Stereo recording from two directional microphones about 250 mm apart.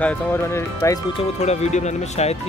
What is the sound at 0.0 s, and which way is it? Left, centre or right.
Speech, centre.